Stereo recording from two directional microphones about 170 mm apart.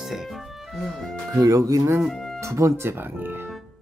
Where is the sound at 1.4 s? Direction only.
20° right (ahead or behind).